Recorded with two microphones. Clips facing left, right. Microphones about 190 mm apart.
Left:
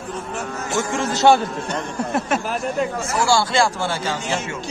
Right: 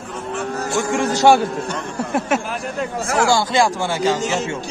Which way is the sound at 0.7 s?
15° right (ahead or behind).